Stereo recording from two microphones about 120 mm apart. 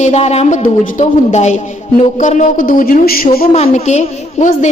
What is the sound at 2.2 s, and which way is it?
A woman's voice, 90° left.